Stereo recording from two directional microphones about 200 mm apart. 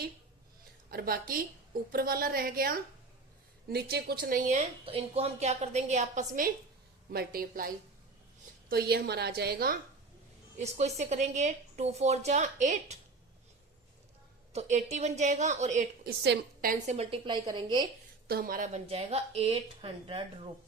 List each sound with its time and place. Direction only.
0.9 s a woman's voice: 50° right (ahead or behind)
8.7 s a woman's voice: 50° right (ahead or behind)
10.6 s a woman's voice: 35° right (ahead or behind)
14.5 s a woman's voice: 35° right (ahead or behind)
16.2 s a woman's voice: 50° right (ahead or behind); by 17.8 s 20° right (ahead or behind)
18.3 s a woman's voice: 50° right (ahead or behind); by 20.2 s 25° right (ahead or behind)